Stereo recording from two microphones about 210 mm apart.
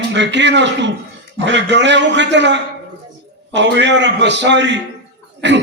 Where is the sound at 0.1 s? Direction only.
55° right (ahead or behind).